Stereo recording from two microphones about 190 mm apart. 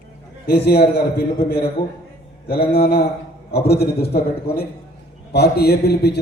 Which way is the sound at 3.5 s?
55° left (ahead or behind).